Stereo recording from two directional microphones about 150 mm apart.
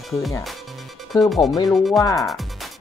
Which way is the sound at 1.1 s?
Centre (ahead or behind).